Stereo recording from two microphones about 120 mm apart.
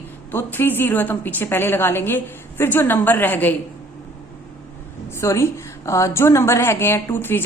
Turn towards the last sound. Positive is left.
turn(degrees=20)  # may be behind; listen again after turning